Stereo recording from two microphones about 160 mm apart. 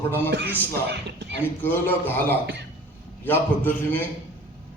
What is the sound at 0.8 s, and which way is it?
Speech, 90° right.